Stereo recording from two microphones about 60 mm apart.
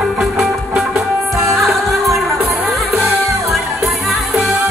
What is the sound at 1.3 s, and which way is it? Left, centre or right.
Music, right.